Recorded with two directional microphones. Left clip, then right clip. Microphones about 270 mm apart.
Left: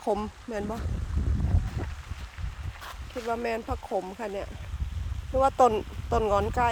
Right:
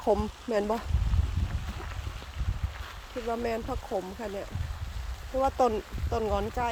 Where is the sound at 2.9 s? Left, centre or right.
Left.